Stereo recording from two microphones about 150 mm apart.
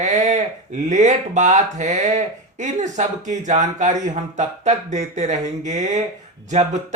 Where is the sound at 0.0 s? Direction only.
55° right (ahead or behind).